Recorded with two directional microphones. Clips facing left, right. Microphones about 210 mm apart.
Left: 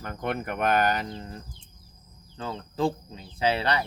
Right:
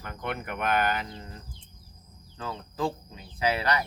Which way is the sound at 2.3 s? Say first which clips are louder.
Left 3 dB; 25° left (ahead or behind).